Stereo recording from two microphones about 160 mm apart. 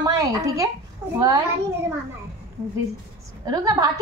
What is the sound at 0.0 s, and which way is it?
Speech, 20° right (ahead or behind).